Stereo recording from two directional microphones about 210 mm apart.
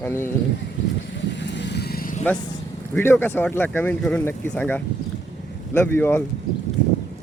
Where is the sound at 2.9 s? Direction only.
10° left (ahead or behind).